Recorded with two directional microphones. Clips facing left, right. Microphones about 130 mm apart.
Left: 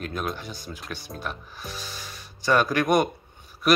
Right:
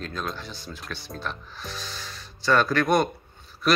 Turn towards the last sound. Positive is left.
turn(degrees=15)  # may be behind; listen again after turning